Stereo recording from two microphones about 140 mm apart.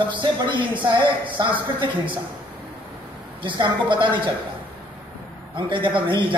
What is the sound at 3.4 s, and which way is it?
Speech, 35° right (ahead or behind).